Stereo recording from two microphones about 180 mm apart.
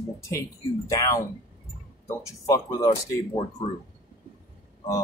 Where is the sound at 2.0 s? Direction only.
15° left (ahead or behind).